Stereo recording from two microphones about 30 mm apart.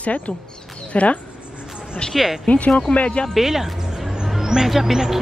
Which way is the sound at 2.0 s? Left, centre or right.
Left.